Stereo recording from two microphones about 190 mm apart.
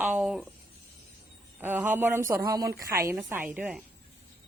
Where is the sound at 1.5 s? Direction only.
10° right (ahead or behind).